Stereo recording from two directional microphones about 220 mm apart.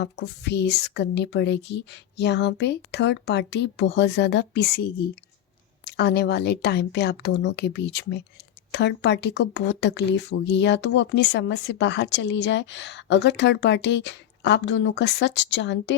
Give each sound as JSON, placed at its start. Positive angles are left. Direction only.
{"t": 0.0, "sound": "speech", "side_deg": 50}